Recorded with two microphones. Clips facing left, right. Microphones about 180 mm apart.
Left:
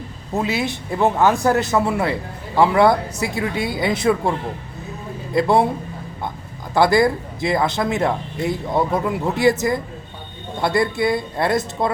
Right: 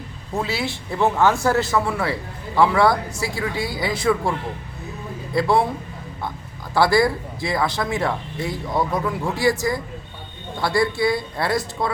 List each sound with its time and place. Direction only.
0.3 s speech: 20° left (ahead or behind)
6.7 s speech: 20° left (ahead or behind)